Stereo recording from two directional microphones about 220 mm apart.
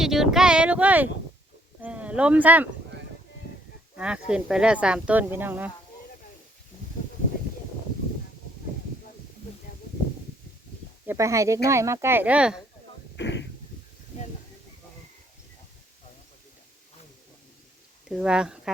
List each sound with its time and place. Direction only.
0.0 s speech: centre (ahead or behind)
3.9 s speech: 5° right (ahead or behind)
11.0 s speech: 10° right (ahead or behind)
13.1 s a sound: 50° left (ahead or behind)
18.1 s speech: 5° right (ahead or behind)